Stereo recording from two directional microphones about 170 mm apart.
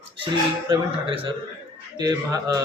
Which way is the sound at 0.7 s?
30° right (ahead or behind).